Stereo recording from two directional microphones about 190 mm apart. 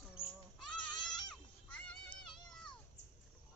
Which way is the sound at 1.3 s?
5° left (ahead or behind).